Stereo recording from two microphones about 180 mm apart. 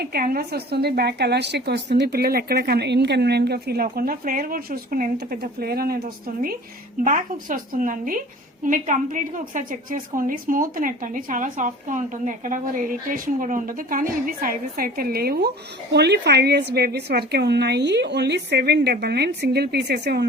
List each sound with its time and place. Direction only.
0.0 s a woman's voice: 55° right (ahead or behind)
7.0 s a woman's voice: 50° right (ahead or behind); by 20.2 s 65° right (ahead or behind)